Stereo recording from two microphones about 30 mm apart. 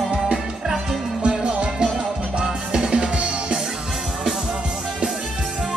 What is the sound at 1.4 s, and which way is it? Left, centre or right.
Music, right.